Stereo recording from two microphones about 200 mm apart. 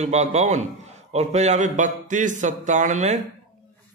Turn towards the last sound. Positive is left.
turn(degrees=-35)  # may be behind; listen again after turning